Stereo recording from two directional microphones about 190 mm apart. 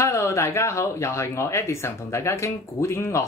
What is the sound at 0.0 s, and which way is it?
Speech, 15° left (ahead or behind).